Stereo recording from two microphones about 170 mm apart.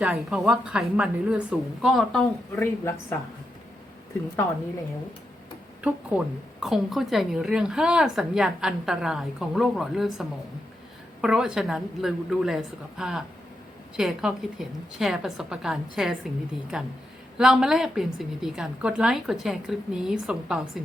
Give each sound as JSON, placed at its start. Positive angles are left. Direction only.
{"t": 0.0, "sound": "a woman's voice", "side_deg": -5}
{"t": 2.6, "sound": "speech", "side_deg": 15}
{"t": 5.8, "sound": "a woman's voice", "side_deg": -5}